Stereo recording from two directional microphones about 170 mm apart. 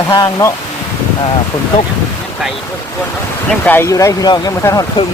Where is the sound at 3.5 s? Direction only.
10° left (ahead or behind).